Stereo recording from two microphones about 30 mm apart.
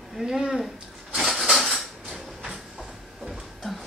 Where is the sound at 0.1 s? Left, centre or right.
Centre.